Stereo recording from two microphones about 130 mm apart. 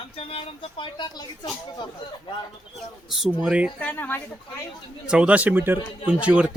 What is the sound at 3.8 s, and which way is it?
Speech, 15° left (ahead or behind).